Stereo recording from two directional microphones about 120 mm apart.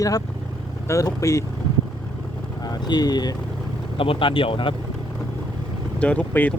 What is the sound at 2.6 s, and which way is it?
Speech, 35° left (ahead or behind).